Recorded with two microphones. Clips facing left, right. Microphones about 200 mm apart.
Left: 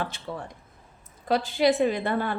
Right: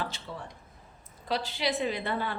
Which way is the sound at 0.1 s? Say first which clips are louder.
Left 5 dB; 55° left (ahead or behind).